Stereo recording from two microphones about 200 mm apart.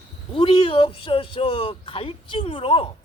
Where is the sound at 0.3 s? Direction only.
25° left (ahead or behind).